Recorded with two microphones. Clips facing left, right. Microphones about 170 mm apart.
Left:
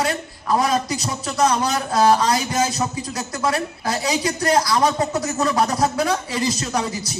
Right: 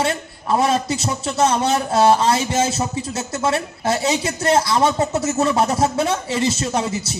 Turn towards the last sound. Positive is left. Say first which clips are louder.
# right 2 dB
turn(degrees=-25)  # may be behind; listen again after turning